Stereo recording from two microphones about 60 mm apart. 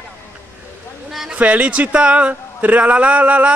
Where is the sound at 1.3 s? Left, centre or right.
Right.